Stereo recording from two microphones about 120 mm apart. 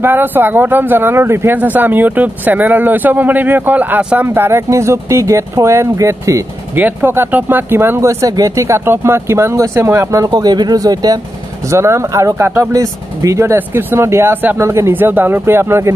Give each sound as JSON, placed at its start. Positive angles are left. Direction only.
{"t": 0.0, "sound": "speech", "side_deg": -15}
{"t": 6.7, "sound": "speech", "side_deg": -15}